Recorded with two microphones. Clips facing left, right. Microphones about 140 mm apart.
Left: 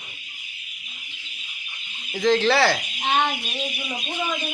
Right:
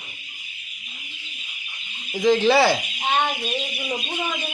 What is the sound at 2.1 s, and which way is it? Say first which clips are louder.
Speech: right 2 dB; 15° right (ahead or behind).